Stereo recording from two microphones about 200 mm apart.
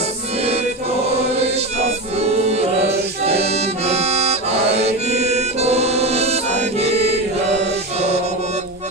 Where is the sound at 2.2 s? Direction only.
30° right (ahead or behind).